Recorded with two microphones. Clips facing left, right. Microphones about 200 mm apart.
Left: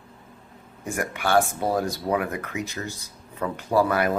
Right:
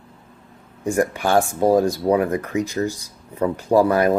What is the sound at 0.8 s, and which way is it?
Speech, 35° right (ahead or behind).